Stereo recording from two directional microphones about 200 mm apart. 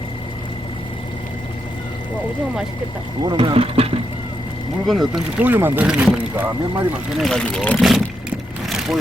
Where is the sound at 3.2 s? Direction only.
25° right (ahead or behind).